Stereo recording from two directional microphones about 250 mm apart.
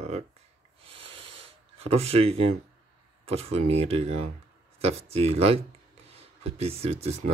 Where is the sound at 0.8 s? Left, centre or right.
Right.